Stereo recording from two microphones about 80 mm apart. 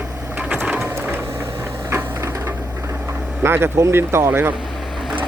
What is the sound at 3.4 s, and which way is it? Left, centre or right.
Speech, right.